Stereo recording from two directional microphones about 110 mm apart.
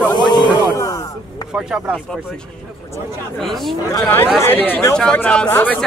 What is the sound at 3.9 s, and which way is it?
Speech, 20° left (ahead or behind).